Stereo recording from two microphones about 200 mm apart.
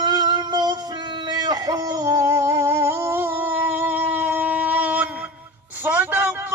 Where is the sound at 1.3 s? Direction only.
20° right (ahead or behind).